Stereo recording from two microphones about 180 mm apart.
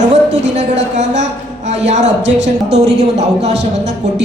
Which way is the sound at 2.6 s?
40° right (ahead or behind).